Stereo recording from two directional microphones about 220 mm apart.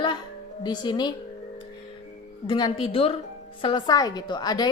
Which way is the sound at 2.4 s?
20° left (ahead or behind).